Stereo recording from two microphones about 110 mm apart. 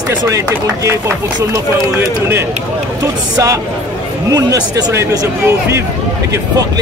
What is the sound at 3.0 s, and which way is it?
A man's voice, 30° right (ahead or behind).